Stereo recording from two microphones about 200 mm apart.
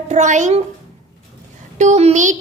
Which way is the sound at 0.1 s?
35° right (ahead or behind).